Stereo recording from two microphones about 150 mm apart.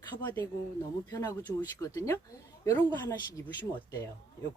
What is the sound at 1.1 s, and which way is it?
A woman's voice, 25° left (ahead or behind).